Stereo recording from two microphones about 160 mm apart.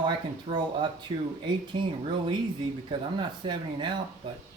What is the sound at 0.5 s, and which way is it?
Speech, 30° right (ahead or behind).